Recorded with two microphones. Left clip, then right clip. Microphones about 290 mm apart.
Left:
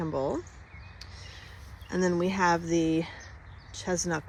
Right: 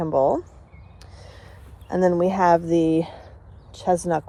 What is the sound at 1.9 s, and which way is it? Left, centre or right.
Speech, centre.